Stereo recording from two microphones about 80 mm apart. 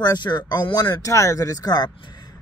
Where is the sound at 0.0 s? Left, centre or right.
Left.